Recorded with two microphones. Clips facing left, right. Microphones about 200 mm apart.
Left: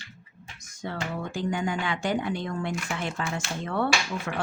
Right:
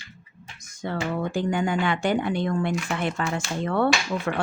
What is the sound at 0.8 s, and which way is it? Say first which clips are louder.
Speech: right 5 dB; 60° right (ahead or behind).